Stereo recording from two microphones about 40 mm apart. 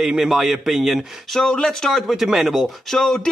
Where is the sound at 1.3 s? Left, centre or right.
Centre.